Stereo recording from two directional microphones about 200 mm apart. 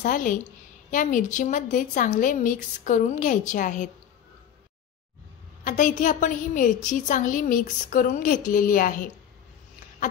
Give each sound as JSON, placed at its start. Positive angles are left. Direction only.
{"t": 0.0, "sound": "a woman's voice", "side_deg": 40}
{"t": 5.6, "sound": "a woman's voice", "side_deg": 40}